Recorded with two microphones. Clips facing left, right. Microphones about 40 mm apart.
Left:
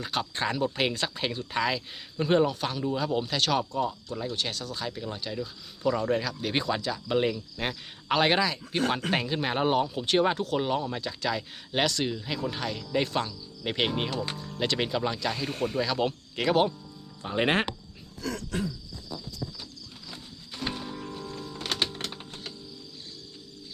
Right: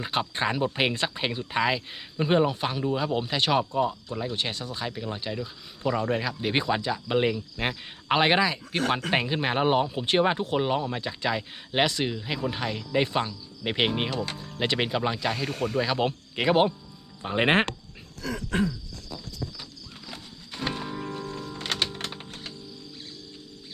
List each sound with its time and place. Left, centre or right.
0.0 s speech: right
18.2 s a sound: centre
20.1 s wild animals: right
20.7 s music: right
21.7 s music: centre
22.1 s music: centre